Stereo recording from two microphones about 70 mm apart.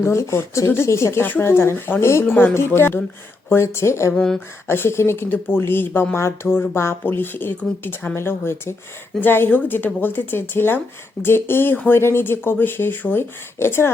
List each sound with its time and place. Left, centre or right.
0.0 s speech: left
4.1 s speech: centre
4.7 s speech: left